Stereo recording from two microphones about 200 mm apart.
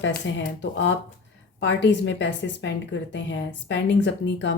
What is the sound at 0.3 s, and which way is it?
A woman's voice, 65° left (ahead or behind).